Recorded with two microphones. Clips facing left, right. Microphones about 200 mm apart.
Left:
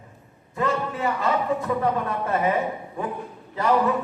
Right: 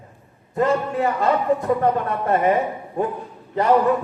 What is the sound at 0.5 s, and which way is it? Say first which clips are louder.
A man's voice: right 6 dB; 40° right (ahead or behind).